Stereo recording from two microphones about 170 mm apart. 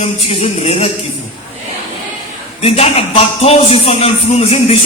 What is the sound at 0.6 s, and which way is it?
Speech, 35° left (ahead or behind).